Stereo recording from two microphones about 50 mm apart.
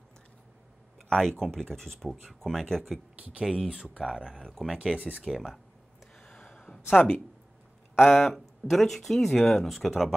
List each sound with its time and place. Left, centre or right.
1.4 s speech: centre
3.2 s speech: right
3.4 s speech: centre
4.8 s speech: right
5.2 s speech: centre
6.1 s a sound: centre
6.9 s speech: left
8.0 s speech: centre